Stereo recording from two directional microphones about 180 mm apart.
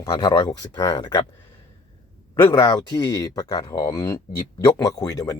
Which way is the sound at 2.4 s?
20° left (ahead or behind).